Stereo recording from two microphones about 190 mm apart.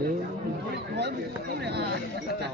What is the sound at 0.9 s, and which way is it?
Speech, 60° right (ahead or behind).